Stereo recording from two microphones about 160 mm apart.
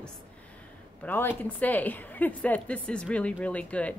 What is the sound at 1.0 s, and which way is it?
A woman's voice, 15° left (ahead or behind).